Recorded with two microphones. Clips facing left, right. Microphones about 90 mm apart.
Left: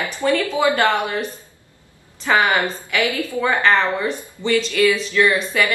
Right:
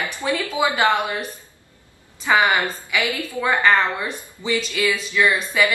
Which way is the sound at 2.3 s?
10° right (ahead or behind).